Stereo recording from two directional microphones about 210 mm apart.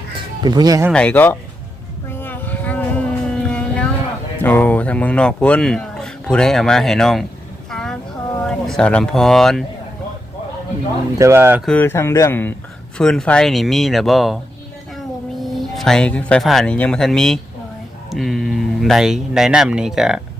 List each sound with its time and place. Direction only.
0.4 s speech: 20° right (ahead or behind)
0.9 s speech: 5° left (ahead or behind)
2.0 s a sound: 10° left (ahead or behind)
4.4 s speech: 10° left (ahead or behind)
7.7 s a sound: centre (ahead or behind)
8.4 s speech: centre (ahead or behind)
11.2 s speech: 10° right (ahead or behind)
11.6 s speech: 5° left (ahead or behind)
15.6 s speech: centre (ahead or behind)